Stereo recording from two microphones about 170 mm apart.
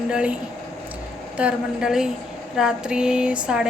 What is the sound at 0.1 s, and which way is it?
Speech, 5° right (ahead or behind).